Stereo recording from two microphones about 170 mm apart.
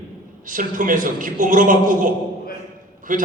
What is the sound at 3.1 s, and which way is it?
Speech, 50° right (ahead or behind).